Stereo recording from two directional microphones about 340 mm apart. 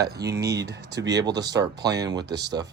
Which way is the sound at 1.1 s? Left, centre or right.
Centre.